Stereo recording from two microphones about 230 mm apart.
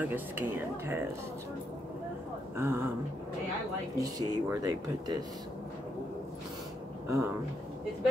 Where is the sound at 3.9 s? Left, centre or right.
Centre.